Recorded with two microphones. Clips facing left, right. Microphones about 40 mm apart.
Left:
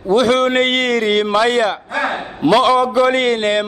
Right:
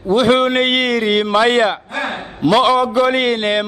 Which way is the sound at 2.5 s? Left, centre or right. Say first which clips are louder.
Even; centre.